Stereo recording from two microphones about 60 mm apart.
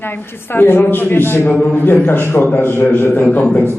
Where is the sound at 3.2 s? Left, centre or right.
Left.